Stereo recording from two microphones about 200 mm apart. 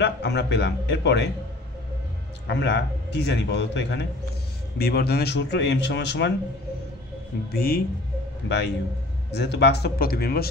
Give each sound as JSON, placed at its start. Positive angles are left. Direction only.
{"t": 0.0, "sound": "a man's voice", "side_deg": 60}
{"t": 2.4, "sound": "a man's voice", "side_deg": 60}
{"t": 7.5, "sound": "a man's voice", "side_deg": 50}